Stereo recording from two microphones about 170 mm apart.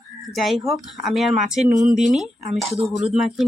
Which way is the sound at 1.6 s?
45° right (ahead or behind).